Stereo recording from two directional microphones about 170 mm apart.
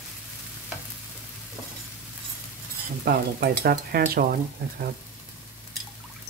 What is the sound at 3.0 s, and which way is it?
Speech, 65° right (ahead or behind).